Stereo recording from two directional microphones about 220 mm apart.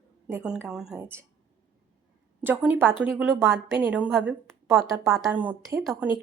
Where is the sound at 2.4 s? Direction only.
10° right (ahead or behind).